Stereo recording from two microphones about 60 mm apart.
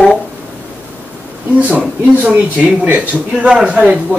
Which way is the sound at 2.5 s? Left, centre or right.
Right.